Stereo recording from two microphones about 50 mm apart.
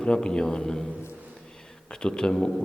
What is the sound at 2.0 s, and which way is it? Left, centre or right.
Speech, centre.